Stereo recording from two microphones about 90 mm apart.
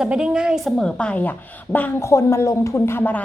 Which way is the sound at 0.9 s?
15° left (ahead or behind).